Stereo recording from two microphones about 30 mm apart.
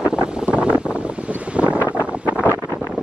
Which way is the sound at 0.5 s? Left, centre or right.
Right.